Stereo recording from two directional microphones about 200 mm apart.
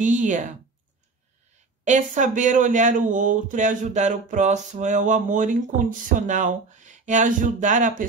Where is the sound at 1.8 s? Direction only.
40° right (ahead or behind).